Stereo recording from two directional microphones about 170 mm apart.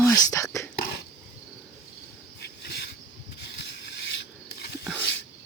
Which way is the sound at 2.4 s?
70° left (ahead or behind).